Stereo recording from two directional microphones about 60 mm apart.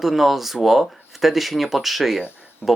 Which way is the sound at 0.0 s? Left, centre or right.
Centre.